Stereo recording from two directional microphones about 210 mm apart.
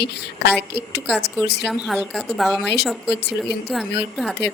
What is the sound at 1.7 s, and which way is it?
Speech, centre (ahead or behind).